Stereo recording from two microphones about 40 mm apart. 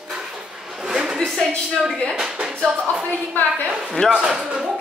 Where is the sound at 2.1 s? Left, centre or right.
Centre.